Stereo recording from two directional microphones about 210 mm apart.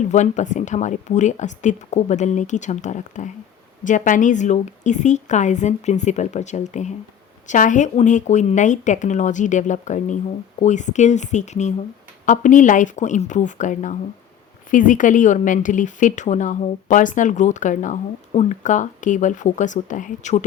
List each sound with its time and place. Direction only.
0.1 s speech: 35° left (ahead or behind)